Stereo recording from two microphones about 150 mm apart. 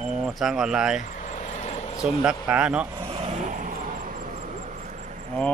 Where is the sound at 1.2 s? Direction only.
50° left (ahead or behind).